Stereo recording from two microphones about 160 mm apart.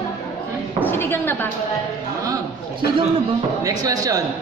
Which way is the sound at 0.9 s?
15° left (ahead or behind).